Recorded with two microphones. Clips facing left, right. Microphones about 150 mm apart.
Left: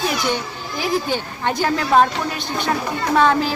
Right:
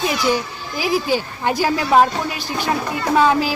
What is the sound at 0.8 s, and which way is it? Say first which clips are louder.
A woman's voice: right 2 dB; 5° right (ahead or behind).